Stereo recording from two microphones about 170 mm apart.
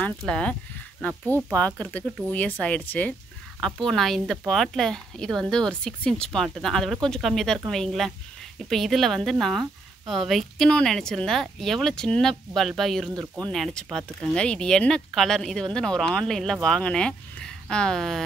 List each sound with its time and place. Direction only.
0.2 s a woman's voice: 5° left (ahead or behind)